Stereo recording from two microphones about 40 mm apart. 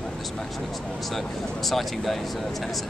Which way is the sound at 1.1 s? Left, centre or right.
Centre.